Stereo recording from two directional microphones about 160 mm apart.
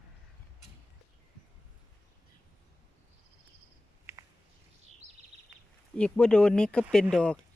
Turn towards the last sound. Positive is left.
turn(degrees=5)  # may be behind; listen again after turning